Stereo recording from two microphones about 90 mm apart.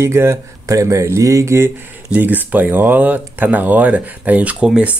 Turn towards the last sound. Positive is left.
turn(degrees=-10)  # may be behind; listen again after turning